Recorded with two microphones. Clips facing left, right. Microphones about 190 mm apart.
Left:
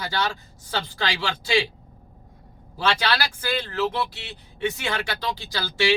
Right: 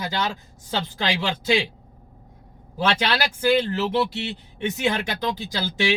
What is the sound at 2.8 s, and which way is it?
Speech, 20° right (ahead or behind).